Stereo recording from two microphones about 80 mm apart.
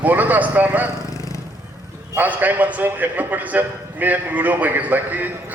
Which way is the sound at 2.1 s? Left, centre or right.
Right.